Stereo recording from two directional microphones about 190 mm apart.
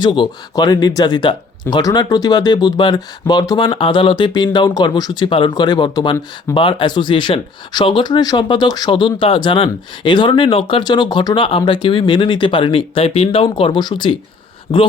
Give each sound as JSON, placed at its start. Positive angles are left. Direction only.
{"t": 0.0, "sound": "speech", "side_deg": 25}